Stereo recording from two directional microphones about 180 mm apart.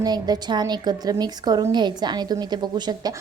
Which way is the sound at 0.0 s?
20° right (ahead or behind).